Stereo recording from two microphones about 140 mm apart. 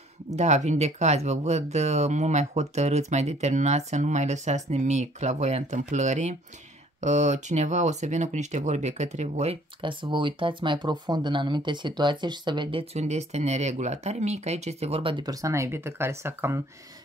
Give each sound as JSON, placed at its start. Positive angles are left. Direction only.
{"t": 0.4, "sound": "speech", "side_deg": -55}
{"t": 9.8, "sound": "speech", "side_deg": -35}
{"t": 12.9, "sound": "speech", "side_deg": -55}